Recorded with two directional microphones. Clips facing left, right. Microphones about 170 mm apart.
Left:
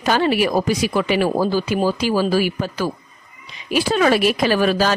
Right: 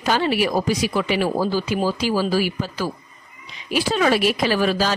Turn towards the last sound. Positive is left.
turn(degrees=55)  # may be behind; listen again after turning